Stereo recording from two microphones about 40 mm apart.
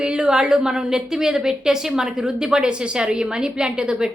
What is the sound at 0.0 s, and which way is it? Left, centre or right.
A woman's voice, right.